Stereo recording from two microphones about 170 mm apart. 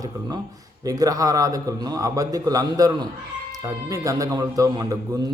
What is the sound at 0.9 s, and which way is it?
A man's voice, 20° right (ahead or behind).